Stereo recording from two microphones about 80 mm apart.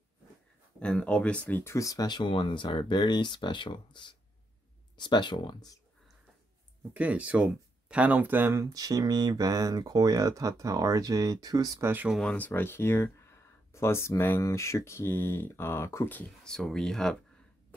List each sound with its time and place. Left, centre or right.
0.7 s speech: centre
1.6 s speech: left
2.0 s speech: left
6.9 s speech: centre
8.7 s speech: right
11.8 s speech: right
12.4 s speech: left
16.3 s speech: centre